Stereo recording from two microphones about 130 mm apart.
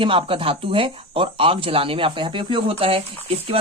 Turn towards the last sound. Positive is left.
turn(degrees=-45)  # may be behind; listen again after turning